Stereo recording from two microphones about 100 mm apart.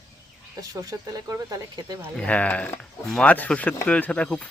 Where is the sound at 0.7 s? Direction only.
35° right (ahead or behind).